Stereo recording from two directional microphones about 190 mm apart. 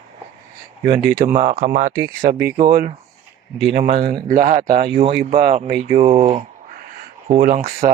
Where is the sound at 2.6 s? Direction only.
55° right (ahead or behind).